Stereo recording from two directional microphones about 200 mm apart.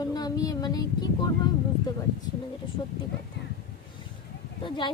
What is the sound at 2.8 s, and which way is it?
Speech, 20° left (ahead or behind).